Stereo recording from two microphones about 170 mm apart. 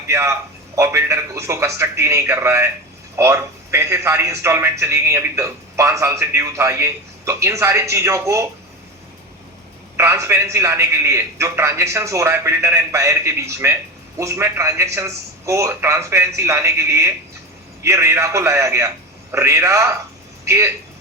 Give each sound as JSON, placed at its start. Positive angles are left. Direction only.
{"t": 0.1, "sound": "a man's voice", "side_deg": -15}
{"t": 10.0, "sound": "a man's voice", "side_deg": -15}